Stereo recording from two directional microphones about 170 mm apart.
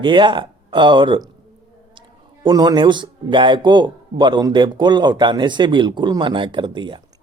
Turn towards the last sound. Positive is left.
turn(degrees=-25)  # may be behind; listen again after turning